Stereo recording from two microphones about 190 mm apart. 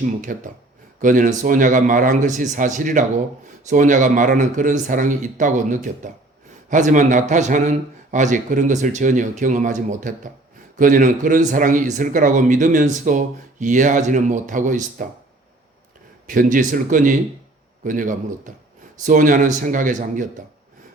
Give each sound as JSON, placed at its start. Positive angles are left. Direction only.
{"t": 0.0, "sound": "speech", "side_deg": -45}
{"t": 16.2, "sound": "speech", "side_deg": -45}